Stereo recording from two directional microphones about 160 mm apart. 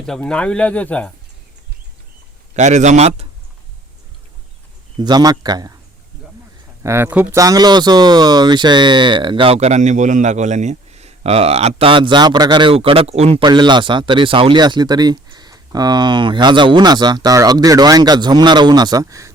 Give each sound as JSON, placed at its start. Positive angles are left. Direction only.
{"t": 0.0, "sound": "speech", "side_deg": 5}
{"t": 2.6, "sound": "speech", "side_deg": -45}
{"t": 4.9, "sound": "speech", "side_deg": -25}
{"t": 6.8, "sound": "speech", "side_deg": -15}
{"t": 7.3, "sound": "speech", "side_deg": -20}
{"t": 13.4, "sound": "speech", "side_deg": -30}